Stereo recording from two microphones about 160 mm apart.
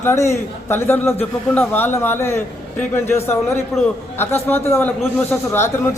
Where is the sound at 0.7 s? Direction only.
15° left (ahead or behind).